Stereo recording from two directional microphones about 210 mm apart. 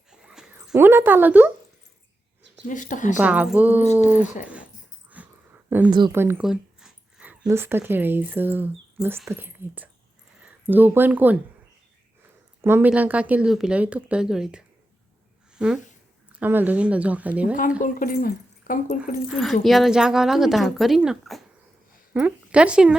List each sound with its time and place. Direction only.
0.1 s a sound: 5° right (ahead or behind)
2.6 s speech: 35° left (ahead or behind)
3.2 s speech: 5° right (ahead or behind)
5.0 s a sound: 5° right (ahead or behind)
5.7 s speech: 10° right (ahead or behind)
12.6 s speech: 10° right (ahead or behind)
17.8 s speech: 40° left (ahead or behind)
19.3 s speech: centre (ahead or behind)